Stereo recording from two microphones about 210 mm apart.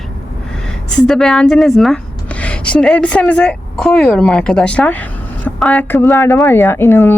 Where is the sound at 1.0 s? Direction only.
5° left (ahead or behind).